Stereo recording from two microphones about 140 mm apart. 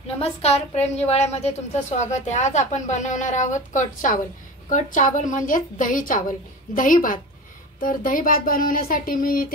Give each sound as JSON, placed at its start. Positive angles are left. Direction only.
{"t": 0.2, "sound": "a woman's voice", "side_deg": 50}
{"t": 7.8, "sound": "speech", "side_deg": 85}